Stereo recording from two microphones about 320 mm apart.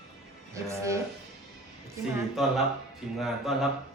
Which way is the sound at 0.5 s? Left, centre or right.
Centre.